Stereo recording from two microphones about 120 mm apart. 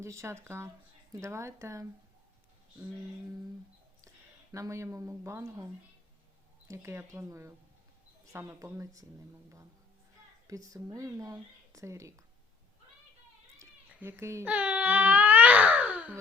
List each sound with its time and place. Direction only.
0.0 s speech: 25° right (ahead or behind)
4.5 s speech: 25° right (ahead or behind)
6.7 s speech: 25° right (ahead or behind)
10.4 s speech: 30° right (ahead or behind)
13.6 s cat: 20° right (ahead or behind)
14.4 s baby cry: 10° right (ahead or behind)